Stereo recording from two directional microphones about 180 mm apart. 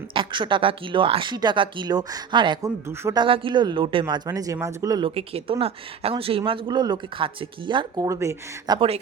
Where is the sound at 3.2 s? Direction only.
30° right (ahead or behind).